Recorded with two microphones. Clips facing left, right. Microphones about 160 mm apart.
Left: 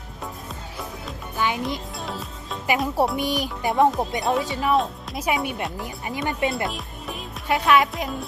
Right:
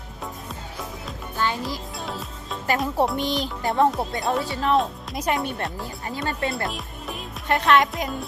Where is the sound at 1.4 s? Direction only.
15° left (ahead or behind).